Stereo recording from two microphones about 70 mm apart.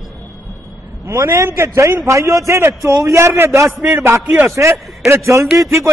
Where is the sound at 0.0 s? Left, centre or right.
Centre.